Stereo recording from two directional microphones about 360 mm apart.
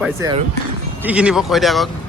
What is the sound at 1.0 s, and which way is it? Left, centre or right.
Speech, centre.